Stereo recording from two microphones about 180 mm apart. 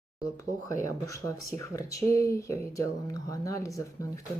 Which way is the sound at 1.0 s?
15° left (ahead or behind).